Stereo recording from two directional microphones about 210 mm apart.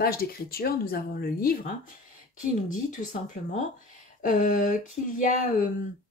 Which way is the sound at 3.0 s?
35° left (ahead or behind).